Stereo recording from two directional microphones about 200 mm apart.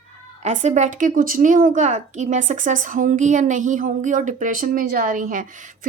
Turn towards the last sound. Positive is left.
turn(degrees=-40)  # may be behind; listen again after turning